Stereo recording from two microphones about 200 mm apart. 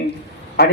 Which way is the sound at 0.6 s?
55° left (ahead or behind).